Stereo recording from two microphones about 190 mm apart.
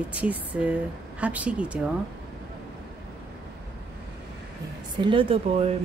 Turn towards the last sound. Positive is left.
turn(degrees=-30)  # may be behind; listen again after turning